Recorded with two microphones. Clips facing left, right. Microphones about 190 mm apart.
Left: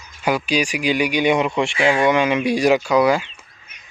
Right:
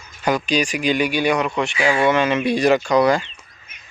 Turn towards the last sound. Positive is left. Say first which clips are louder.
# even
turn(degrees=10)  # may be behind; listen again after turning